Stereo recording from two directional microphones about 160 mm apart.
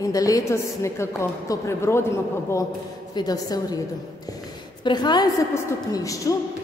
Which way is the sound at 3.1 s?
25° left (ahead or behind).